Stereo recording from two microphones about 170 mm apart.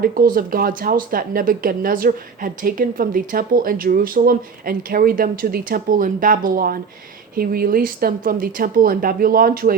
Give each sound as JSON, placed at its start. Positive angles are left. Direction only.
{"t": 0.0, "sound": "speech", "side_deg": -55}